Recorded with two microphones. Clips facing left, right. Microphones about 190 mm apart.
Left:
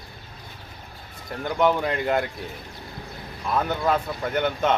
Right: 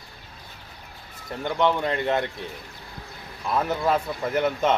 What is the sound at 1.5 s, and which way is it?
Speech, 5° left (ahead or behind).